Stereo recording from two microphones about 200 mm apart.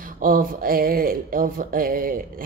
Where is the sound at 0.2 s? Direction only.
45° right (ahead or behind).